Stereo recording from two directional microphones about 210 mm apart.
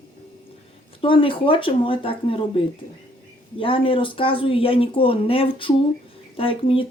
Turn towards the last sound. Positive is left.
turn(degrees=25)  # may be behind; listen again after turning